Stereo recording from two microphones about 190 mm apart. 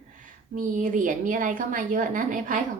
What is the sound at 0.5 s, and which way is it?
A woman's voice, 45° right (ahead or behind).